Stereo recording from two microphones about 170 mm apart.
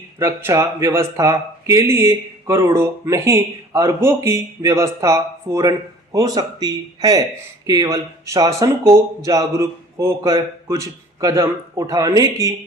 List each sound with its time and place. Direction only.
0.2 s speech: 15° right (ahead or behind)